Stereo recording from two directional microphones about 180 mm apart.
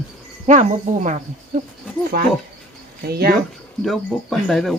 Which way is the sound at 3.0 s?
60° right (ahead or behind).